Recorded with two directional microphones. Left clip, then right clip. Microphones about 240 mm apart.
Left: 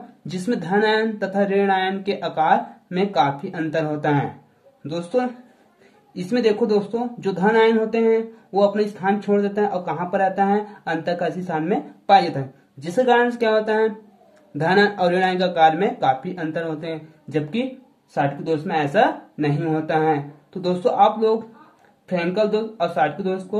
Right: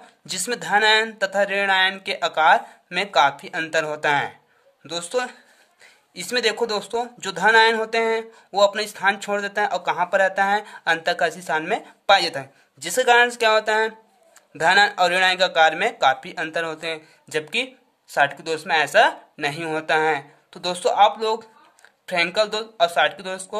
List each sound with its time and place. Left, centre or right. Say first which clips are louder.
0.3 s speech: right 2 dB; right